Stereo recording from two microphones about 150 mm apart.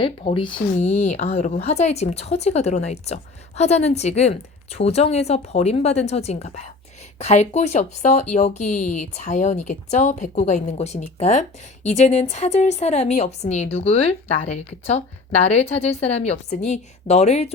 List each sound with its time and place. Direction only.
0.0 s speech: 35° left (ahead or behind)